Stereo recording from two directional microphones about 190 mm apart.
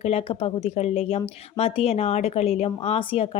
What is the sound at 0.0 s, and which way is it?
Speech, 30° left (ahead or behind).